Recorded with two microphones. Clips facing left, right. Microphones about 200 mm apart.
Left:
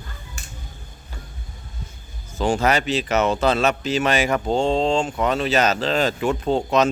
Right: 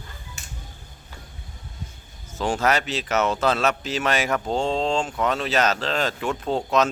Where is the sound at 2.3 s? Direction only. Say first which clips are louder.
Left 3 dB; centre (ahead or behind).